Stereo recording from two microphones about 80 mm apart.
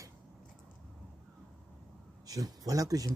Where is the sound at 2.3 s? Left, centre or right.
Right.